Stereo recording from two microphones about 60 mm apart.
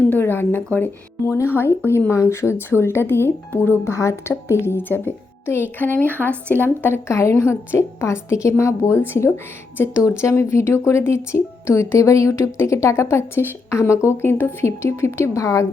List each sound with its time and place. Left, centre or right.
0.0 s a woman's voice: left
1.3 s a woman's voice: left
4.8 s a woman's voice: left
7.1 s speech: left